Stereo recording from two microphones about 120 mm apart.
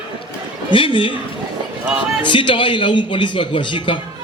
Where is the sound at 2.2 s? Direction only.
45° left (ahead or behind).